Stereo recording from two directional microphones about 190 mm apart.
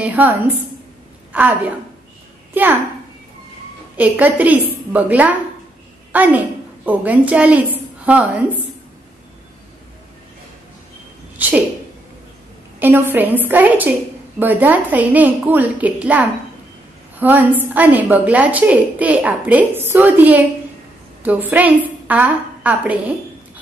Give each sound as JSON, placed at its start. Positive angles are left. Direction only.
{"t": 0.0, "sound": "a woman's voice", "side_deg": -10}
{"t": 3.9, "sound": "a woman's voice", "side_deg": -10}
{"t": 11.4, "sound": "speech", "side_deg": -10}
{"t": 12.7, "sound": "a woman's voice", "side_deg": -10}